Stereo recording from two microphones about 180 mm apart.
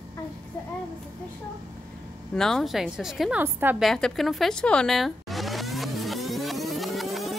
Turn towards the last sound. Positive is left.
turn(degrees=0)  # may be behind; listen again after turning